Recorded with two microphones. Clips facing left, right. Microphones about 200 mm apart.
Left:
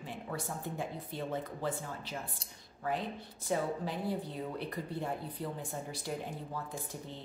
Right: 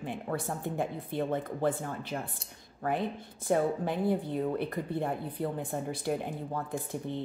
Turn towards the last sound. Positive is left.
turn(degrees=-55)  # may be behind; listen again after turning